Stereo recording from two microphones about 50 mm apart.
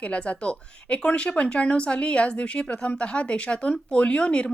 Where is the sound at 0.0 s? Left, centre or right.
Left.